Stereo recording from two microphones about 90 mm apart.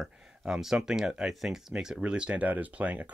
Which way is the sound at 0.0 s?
5° right (ahead or behind).